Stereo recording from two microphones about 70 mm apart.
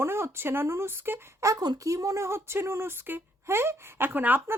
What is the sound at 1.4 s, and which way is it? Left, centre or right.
Speech, right.